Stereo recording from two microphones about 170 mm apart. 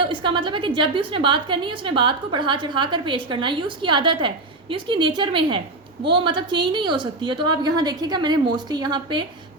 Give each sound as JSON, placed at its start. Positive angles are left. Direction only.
{"t": 0.0, "sound": "a woman's voice", "side_deg": -30}